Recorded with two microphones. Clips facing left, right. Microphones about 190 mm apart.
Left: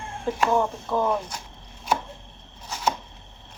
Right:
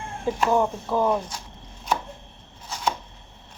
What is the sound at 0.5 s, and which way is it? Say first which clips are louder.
Speech: right 3 dB; 10° right (ahead or behind).